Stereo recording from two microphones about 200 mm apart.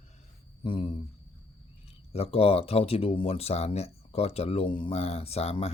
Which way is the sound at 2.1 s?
30° left (ahead or behind).